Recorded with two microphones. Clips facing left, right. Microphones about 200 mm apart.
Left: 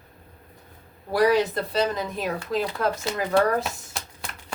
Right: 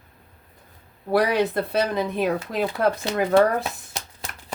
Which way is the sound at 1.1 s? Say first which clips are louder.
Even; 60° right (ahead or behind).